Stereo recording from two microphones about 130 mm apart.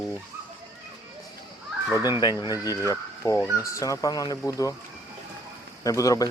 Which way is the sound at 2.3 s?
25° right (ahead or behind).